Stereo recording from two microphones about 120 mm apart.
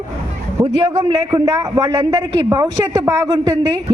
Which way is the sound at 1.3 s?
30° right (ahead or behind).